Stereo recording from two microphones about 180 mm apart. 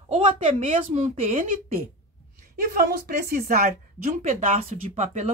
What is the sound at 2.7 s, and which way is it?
A woman's voice, 55° right (ahead or behind).